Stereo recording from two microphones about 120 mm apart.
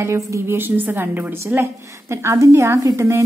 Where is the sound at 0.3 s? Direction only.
20° right (ahead or behind).